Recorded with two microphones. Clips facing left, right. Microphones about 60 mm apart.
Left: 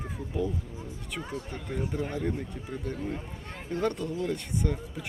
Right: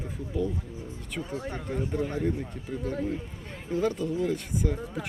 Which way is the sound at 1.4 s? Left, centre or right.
Right.